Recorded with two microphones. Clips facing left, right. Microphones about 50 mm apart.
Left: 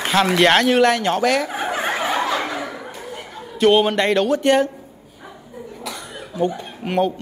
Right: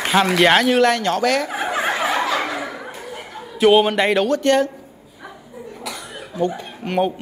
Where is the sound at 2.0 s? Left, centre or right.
Centre.